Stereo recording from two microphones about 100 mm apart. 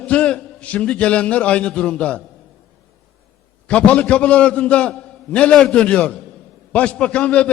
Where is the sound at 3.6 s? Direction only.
10° left (ahead or behind).